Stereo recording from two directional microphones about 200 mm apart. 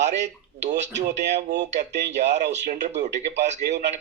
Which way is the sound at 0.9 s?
60° right (ahead or behind).